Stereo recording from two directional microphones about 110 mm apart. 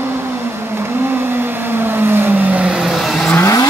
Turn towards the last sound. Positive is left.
turn(degrees=30)  # may be behind; listen again after turning